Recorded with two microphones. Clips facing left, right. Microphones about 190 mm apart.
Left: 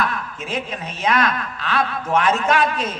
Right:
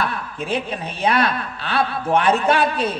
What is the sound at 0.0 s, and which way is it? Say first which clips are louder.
A woman's voice: even; 35° right (ahead or behind).